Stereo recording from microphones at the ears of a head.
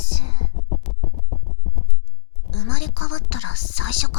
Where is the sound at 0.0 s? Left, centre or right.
Left.